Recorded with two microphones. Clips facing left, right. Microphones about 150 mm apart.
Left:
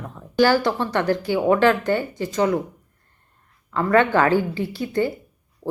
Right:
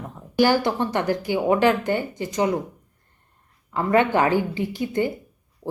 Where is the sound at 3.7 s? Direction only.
15° right (ahead or behind).